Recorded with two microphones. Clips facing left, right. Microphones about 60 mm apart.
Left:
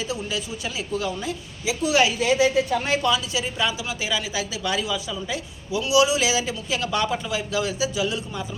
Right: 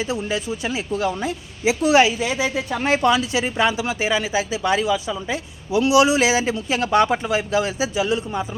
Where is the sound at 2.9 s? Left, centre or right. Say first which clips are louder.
Right 8 dB; right.